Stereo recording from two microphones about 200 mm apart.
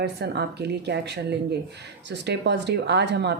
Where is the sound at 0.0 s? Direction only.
55° right (ahead or behind).